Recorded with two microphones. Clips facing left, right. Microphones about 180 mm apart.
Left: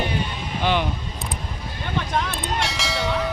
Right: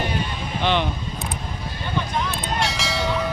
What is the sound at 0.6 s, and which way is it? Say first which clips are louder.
Speech: even; 5° left (ahead or behind).